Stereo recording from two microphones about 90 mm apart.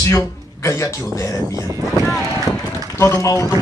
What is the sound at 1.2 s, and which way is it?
Speech, 35° left (ahead or behind).